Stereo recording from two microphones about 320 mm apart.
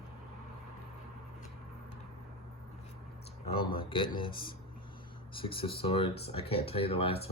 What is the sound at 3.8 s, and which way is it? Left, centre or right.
Speech, centre.